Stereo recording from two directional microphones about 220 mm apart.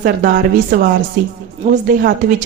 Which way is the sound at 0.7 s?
40° right (ahead or behind).